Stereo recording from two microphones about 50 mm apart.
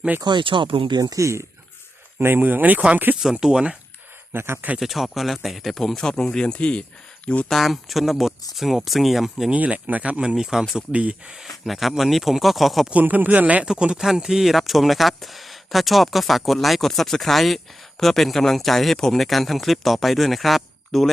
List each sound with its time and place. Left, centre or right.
0.1 s a man's voice: right
1.1 s speech: right
2.1 s speech: right
3.4 s speech: centre
4.4 s a man's voice: right
4.8 s speech: centre; by 7.4 s left
7.6 s speech: centre
9.5 s speech: right
10.2 s speech: centre
10.8 s speech: right
11.6 s speech: centre
12.9 s speech: right
13.7 s speech: centre